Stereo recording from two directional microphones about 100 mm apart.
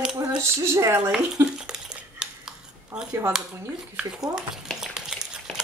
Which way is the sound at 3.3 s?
5° right (ahead or behind).